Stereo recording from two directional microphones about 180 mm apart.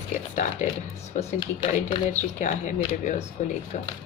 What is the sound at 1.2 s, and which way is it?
Speech, 30° left (ahead or behind).